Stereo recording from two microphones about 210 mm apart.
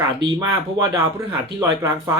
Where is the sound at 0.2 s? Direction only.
20° right (ahead or behind).